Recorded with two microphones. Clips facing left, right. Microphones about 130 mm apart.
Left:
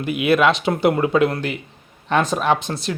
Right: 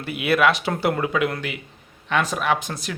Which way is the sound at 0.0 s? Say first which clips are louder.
Left 3 dB; 20° left (ahead or behind).